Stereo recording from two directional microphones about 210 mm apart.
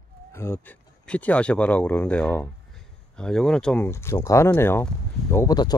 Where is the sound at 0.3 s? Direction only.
10° left (ahead or behind).